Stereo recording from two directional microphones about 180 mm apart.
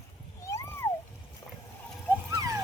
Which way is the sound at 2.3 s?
20° right (ahead or behind).